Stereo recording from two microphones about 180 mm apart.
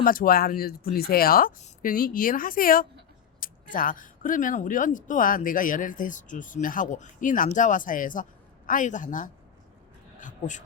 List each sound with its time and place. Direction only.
0.0 s speech: 50° left (ahead or behind)